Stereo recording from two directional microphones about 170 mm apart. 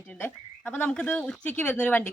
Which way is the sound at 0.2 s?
10° left (ahead or behind).